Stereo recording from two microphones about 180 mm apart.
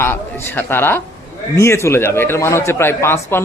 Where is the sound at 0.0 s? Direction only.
10° left (ahead or behind).